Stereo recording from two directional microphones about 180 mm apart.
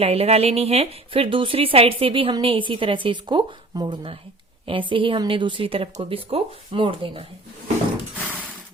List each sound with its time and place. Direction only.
0.0 s a woman's voice: 35° right (ahead or behind)